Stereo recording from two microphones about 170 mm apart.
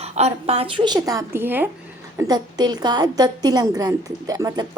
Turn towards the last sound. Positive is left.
turn(degrees=-20)  # may be behind; listen again after turning